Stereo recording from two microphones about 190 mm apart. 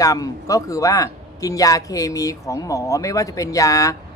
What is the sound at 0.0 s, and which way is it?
Speech, 20° left (ahead or behind).